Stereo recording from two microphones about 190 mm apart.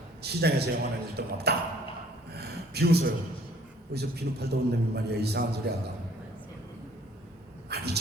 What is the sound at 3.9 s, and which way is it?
A man's voice, 60° right (ahead or behind).